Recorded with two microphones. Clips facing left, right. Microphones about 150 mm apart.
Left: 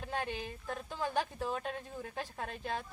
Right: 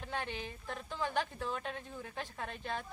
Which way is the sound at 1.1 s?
40° left (ahead or behind).